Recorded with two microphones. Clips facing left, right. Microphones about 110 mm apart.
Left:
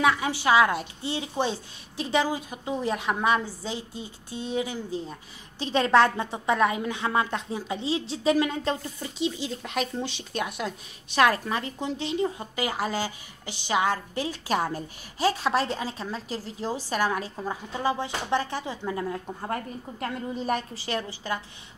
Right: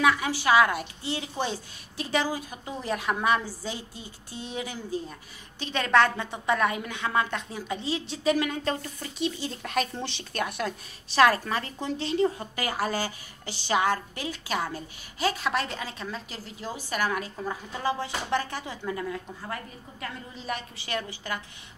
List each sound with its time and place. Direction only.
0.0 s a woman's voice: 25° left (ahead or behind)
9.0 s a woman's voice: 15° left (ahead or behind)
14.1 s a woman's voice: 35° left (ahead or behind)